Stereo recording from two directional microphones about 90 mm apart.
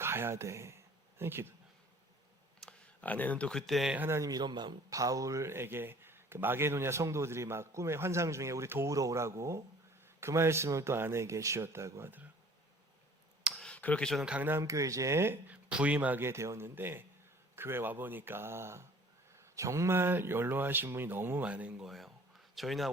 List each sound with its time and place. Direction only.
0.0 s speech: 25° right (ahead or behind)
2.6 s a sound: 15° left (ahead or behind)
3.7 s speech: centre (ahead or behind)
3.9 s speech: 25° right (ahead or behind)
4.2 s a man's voice: 50° right (ahead or behind)
4.9 s speech: 40° right (ahead or behind); by 12.3 s 25° right (ahead or behind)
13.6 s a sound: 15° left (ahead or behind)
14.2 s speech: 10° right (ahead or behind)
14.6 s speech: 40° right (ahead or behind); by 16.2 s 15° right (ahead or behind)
16.2 s speech: 30° right (ahead or behind); by 21.8 s 15° right (ahead or behind)
21.8 s speech: centre (ahead or behind)